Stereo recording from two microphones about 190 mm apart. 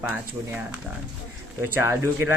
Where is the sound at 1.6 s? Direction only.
15° right (ahead or behind).